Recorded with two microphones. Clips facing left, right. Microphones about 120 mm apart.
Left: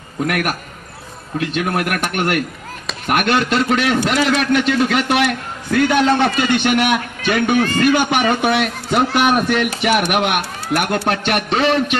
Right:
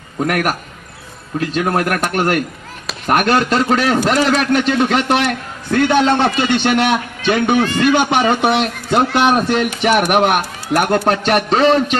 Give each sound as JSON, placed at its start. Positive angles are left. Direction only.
{"t": 0.2, "sound": "a man's voice", "side_deg": -40}
{"t": 9.8, "sound": "a man's voice", "side_deg": -40}